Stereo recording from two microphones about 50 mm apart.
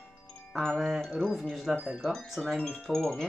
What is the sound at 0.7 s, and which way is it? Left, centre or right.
Speech, centre.